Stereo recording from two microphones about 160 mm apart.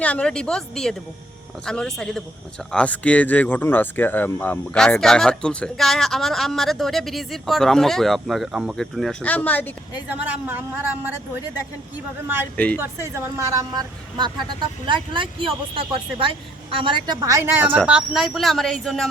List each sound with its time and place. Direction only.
0.0 s speech: 5° left (ahead or behind)
10.1 s a woman's voice: 10° right (ahead or behind)
12.5 s a woman's voice: 10° left (ahead or behind)
12.8 s a woman's voice: 15° right (ahead or behind); by 19.0 s centre (ahead or behind)